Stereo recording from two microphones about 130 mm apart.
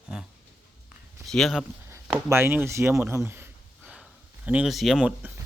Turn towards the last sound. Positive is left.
turn(degrees=-10)  # may be behind; listen again after turning